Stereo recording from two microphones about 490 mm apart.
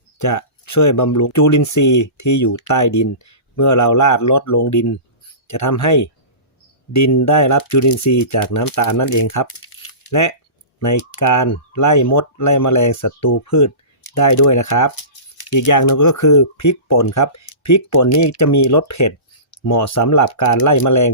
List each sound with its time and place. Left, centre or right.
0.2 s speech: left